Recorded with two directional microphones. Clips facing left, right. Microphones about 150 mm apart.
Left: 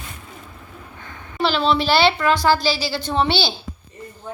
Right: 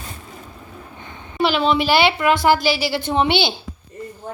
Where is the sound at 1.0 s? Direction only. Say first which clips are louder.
Right 2 dB; 20° right (ahead or behind).